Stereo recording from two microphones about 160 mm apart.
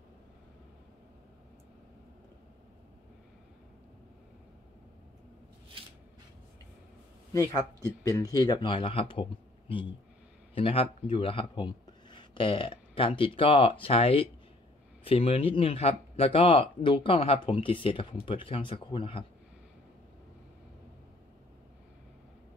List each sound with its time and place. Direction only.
7.3 s speech: 20° left (ahead or behind)